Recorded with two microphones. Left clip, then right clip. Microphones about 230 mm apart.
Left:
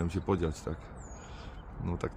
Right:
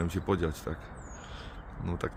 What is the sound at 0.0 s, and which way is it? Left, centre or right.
Speech, centre.